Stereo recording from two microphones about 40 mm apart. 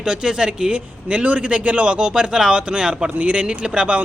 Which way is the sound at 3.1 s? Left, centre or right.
Right.